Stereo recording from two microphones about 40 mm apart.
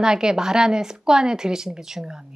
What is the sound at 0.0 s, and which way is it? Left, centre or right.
Speech, centre.